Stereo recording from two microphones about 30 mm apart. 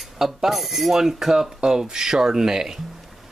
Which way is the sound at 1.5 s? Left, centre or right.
Right.